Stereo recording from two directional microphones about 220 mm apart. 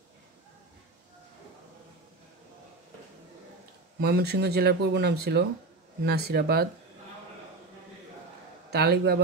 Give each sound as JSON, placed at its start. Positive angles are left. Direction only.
{"t": 4.0, "sound": "speech", "side_deg": -45}
{"t": 8.6, "sound": "a man's voice", "side_deg": -45}